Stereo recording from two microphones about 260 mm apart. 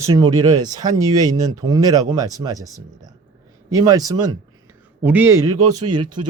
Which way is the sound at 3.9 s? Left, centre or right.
Centre.